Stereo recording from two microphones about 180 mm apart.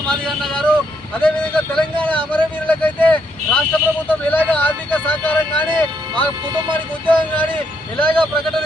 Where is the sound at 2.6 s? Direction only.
10° left (ahead or behind).